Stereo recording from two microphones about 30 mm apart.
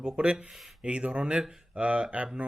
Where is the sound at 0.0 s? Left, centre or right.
Right.